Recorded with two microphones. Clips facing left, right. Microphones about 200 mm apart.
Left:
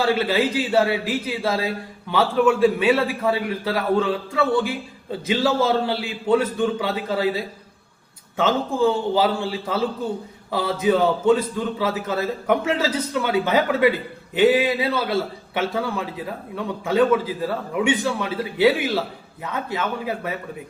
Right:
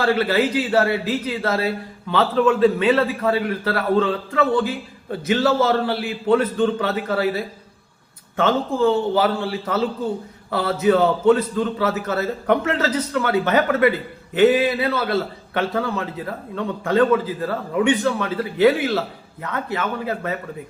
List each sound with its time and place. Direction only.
0.0 s a man's voice: 15° left (ahead or behind)